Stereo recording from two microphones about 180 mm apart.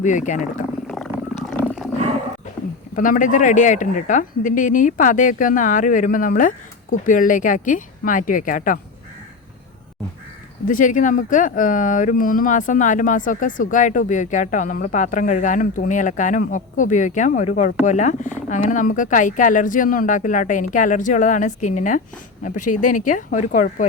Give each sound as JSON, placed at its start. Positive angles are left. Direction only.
{"t": 0.0, "sound": "speech", "side_deg": 45}
{"t": 1.5, "sound": "roaring cats", "side_deg": 0}
{"t": 2.9, "sound": "speech", "side_deg": 50}
{"t": 10.7, "sound": "speech", "side_deg": 45}